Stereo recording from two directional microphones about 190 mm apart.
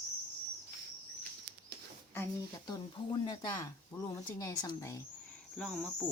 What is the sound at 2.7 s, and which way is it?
Speech, 20° left (ahead or behind).